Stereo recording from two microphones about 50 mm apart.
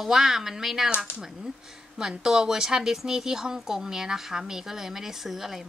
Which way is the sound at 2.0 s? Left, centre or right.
Centre.